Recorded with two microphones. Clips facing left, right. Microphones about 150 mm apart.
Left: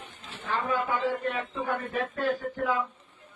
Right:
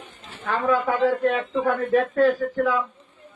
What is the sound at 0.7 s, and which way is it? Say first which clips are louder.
Speech: right 9 dB; 90° right.